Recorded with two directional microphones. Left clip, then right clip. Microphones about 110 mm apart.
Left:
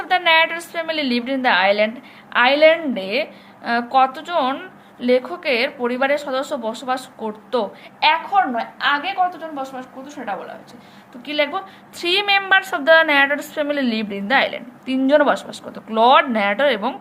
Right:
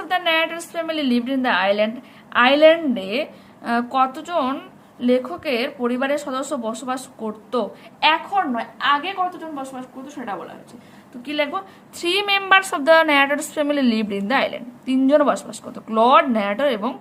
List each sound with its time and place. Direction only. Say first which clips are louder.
0.0 s a woman's voice: left 4 dB; 35° right (ahead or behind)
11.9 s a woman's voice: left 2 dB; 50° right (ahead or behind)
14.3 s a woman's voice: left 4 dB; 45° right (ahead or behind)